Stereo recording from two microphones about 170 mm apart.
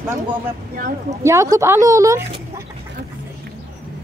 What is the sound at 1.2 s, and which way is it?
Speech, 20° right (ahead or behind).